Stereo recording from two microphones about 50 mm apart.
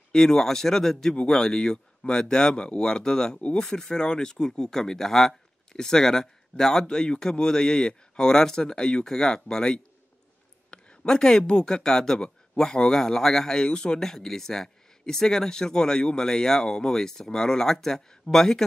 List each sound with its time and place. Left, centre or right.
0.1 s speech: centre
3.3 s speech: left
3.6 s speech: centre